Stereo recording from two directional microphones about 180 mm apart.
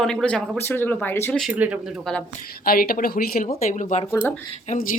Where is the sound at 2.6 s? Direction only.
55° left (ahead or behind).